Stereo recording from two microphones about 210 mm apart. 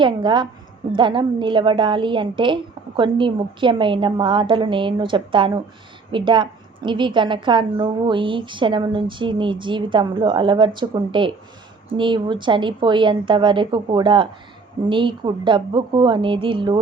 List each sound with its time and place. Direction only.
0.0 s a woman's voice: 20° right (ahead or behind)